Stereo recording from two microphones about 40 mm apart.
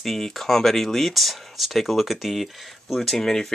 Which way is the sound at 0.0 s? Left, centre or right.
Centre.